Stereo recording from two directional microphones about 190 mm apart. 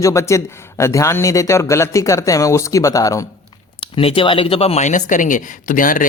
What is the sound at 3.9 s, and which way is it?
Speech, 30° left (ahead or behind).